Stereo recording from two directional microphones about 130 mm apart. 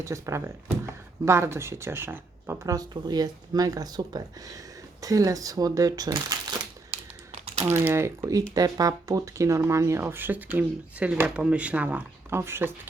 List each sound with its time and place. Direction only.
0.0 s speech: 25° right (ahead or behind)
2.7 s speech: 30° right (ahead or behind)
6.9 s typing: 55° right (ahead or behind)
7.6 s speech: 20° right (ahead or behind)